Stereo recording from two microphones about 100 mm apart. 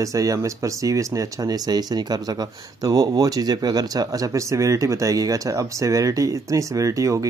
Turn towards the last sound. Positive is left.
turn(degrees=-35)  # may be behind; listen again after turning